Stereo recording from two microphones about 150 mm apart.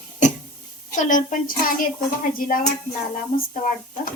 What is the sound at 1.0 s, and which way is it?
Speech, 60° left (ahead or behind).